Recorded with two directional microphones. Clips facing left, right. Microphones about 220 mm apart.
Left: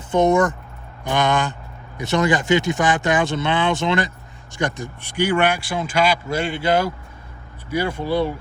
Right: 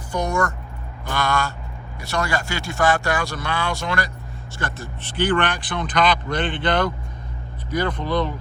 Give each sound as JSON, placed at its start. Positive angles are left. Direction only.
{"t": 0.1, "sound": "speech", "side_deg": 20}